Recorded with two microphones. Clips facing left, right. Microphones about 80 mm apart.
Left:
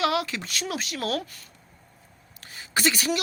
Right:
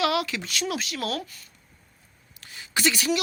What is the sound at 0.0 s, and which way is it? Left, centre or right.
Speech, left.